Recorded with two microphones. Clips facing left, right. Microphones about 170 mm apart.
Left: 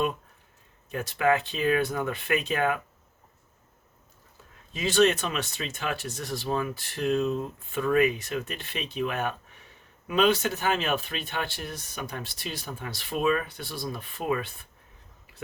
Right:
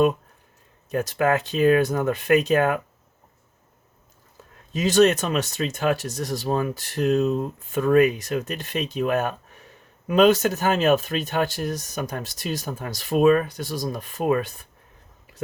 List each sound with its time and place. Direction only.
0.9 s speech: 40° right (ahead or behind)
4.7 s speech: 40° right (ahead or behind)